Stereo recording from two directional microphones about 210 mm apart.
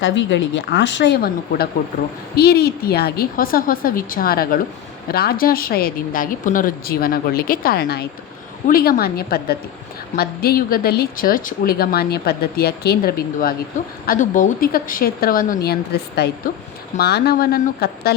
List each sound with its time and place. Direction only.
0.0 s a woman's voice: 60° left (ahead or behind)